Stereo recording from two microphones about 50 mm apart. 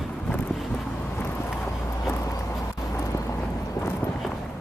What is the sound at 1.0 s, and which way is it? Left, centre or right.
Vehicle, left.